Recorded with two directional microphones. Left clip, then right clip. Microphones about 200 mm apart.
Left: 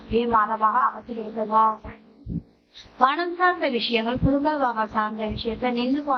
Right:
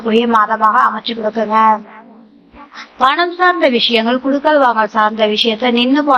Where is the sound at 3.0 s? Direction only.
25° right (ahead or behind).